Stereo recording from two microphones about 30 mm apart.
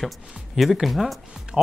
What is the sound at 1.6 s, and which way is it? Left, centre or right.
Speech, right.